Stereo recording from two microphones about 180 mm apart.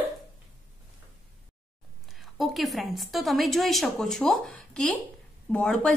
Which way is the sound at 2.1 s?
Centre (ahead or behind).